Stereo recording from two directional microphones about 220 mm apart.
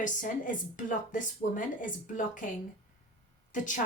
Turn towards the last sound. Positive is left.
turn(degrees=35)  # may be behind; listen again after turning